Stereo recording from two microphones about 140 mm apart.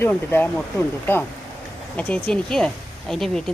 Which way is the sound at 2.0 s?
5° left (ahead or behind).